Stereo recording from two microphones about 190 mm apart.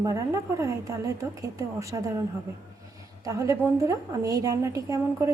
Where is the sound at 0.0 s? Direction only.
15° right (ahead or behind).